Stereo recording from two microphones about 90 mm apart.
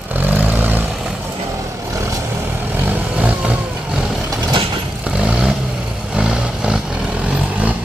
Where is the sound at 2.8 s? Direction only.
15° right (ahead or behind).